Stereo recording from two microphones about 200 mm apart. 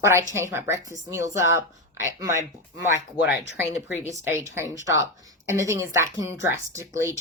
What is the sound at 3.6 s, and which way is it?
A woman's voice, 10° right (ahead or behind).